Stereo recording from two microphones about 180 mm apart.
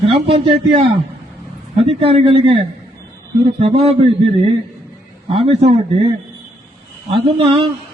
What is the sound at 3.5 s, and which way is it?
Speech, 35° right (ahead or behind).